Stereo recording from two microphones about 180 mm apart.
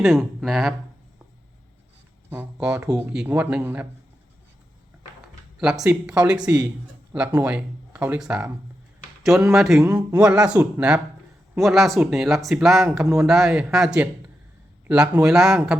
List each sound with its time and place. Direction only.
0.0 s speech: centre (ahead or behind)
2.3 s speech: 10° right (ahead or behind)
5.5 s speech: 5° right (ahead or behind)
9.8 s speech: 20° right (ahead or behind)
10.2 s speech: 5° right (ahead or behind)